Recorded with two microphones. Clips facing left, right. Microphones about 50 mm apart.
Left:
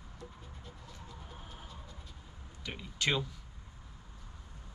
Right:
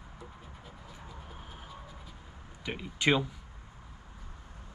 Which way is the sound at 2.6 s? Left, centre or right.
Centre.